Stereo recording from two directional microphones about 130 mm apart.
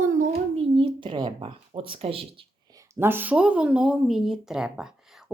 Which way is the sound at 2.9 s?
15° right (ahead or behind).